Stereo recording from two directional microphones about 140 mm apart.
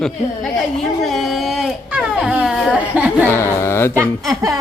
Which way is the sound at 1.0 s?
Centre (ahead or behind).